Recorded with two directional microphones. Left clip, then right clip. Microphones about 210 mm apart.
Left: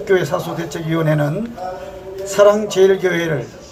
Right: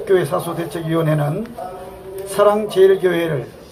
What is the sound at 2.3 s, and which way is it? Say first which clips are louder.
Speech: left 2 dB; 20° left (ahead or behind).